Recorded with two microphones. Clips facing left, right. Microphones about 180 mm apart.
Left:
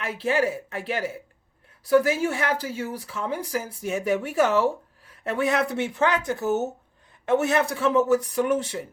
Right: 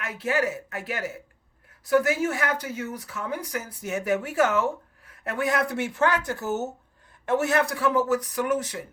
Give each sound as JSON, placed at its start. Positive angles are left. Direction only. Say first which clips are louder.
{"t": 0.0, "sound": "speech", "louder": "left 2 dB", "side_deg": 30}
{"t": 6.3, "sound": "speech", "louder": "left 4 dB", "side_deg": 55}
{"t": 7.3, "sound": "speech", "louder": "left 2 dB", "side_deg": 25}